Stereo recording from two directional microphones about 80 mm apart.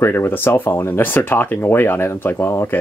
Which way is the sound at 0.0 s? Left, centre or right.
Left.